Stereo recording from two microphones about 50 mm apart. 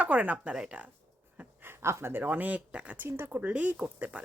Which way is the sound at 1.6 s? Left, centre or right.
Right.